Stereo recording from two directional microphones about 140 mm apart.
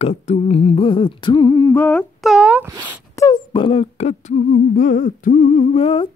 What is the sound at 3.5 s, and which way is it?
Speech, 40° left (ahead or behind).